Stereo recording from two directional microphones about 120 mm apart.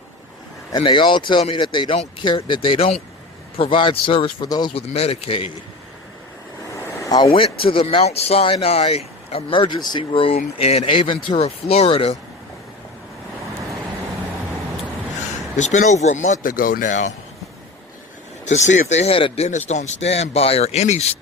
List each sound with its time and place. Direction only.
0.7 s speech: 40° left (ahead or behind)
4.4 s speech: 35° left (ahead or behind)
4.7 s speech: 55° left (ahead or behind)
6.7 s vehicle: 30° left (ahead or behind)
7.3 s speech: 50° left (ahead or behind)
15.5 s speech: 80° left
18.4 s speech: 75° left (ahead or behind); by 19.5 s 55° left (ahead or behind)
19.5 s speech: 80° left